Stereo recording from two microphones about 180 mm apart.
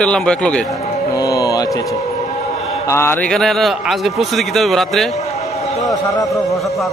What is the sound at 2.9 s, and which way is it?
Mantra, 15° left (ahead or behind).